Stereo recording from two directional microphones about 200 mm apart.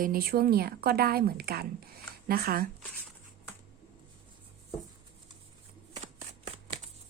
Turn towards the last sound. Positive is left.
turn(degrees=-30)  # may be behind; listen again after turning